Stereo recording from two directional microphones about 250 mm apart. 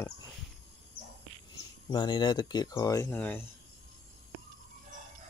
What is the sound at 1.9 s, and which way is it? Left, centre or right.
Speech, centre.